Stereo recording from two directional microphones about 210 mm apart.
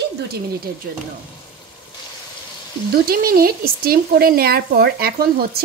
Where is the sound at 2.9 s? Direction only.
45° right (ahead or behind).